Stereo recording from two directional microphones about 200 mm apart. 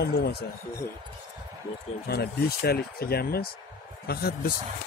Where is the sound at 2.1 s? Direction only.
50° left (ahead or behind).